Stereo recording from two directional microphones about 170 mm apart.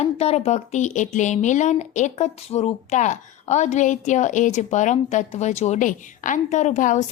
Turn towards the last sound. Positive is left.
turn(degrees=45)  # may be behind; listen again after turning